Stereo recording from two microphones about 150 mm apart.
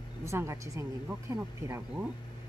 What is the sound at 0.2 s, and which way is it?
Speech, 20° right (ahead or behind).